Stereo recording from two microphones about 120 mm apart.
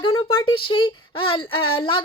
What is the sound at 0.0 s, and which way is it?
Speech, 45° left (ahead or behind).